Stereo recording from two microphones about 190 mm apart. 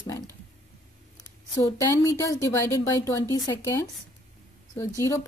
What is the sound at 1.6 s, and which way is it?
A woman's voice, 15° left (ahead or behind).